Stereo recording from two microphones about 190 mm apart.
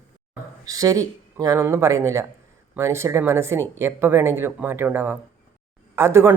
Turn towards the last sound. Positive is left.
turn(degrees=-15)  # may be behind; listen again after turning